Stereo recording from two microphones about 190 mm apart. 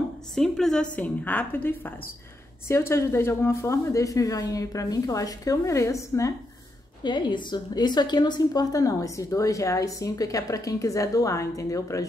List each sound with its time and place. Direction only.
0.4 s a woman's voice: 5° left (ahead or behind)